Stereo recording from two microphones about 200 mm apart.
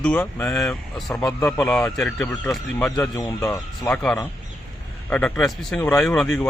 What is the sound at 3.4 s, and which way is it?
Speech, 5° left (ahead or behind).